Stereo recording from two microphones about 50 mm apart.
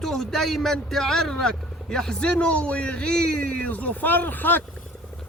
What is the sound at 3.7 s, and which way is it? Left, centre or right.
Speech, left.